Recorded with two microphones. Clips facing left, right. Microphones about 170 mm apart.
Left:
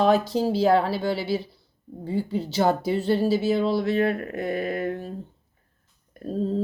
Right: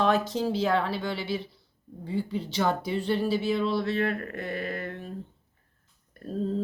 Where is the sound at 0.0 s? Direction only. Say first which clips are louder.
Left 4 dB; 35° left (ahead or behind).